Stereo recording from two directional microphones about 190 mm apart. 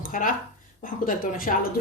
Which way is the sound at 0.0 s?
45° left (ahead or behind).